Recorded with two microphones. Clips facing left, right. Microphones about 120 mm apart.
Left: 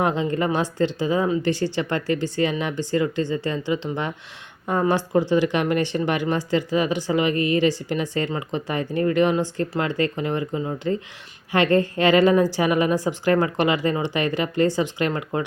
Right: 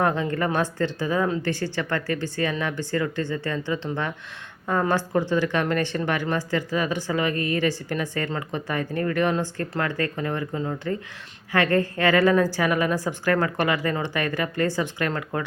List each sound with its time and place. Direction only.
0.0 s a woman's voice: 20° left (ahead or behind)